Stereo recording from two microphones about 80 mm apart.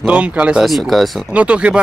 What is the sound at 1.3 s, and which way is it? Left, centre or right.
Speech, centre.